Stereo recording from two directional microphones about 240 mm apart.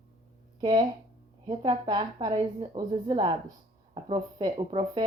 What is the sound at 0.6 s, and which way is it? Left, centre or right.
Speech, centre.